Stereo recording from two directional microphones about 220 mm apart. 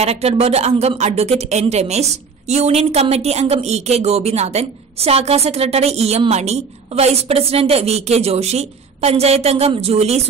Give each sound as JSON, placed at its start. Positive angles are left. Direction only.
{"t": 0.0, "sound": "a woman's voice", "side_deg": -30}